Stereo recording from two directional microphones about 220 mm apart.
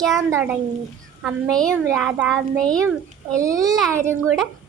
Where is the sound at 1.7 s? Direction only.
10° right (ahead or behind).